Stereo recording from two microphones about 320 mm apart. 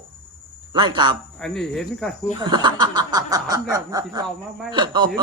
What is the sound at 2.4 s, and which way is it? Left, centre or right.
Speech, centre.